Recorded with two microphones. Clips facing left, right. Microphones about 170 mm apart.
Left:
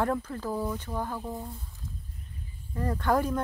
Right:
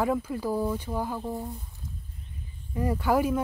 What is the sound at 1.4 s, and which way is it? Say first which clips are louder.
Speech: right 4 dB; 15° right (ahead or behind).